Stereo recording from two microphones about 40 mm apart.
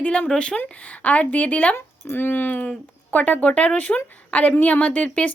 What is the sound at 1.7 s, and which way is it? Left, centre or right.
A woman's voice, left.